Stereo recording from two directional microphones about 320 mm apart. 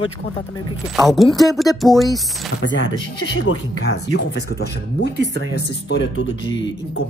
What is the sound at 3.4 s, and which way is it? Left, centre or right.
Speech, left.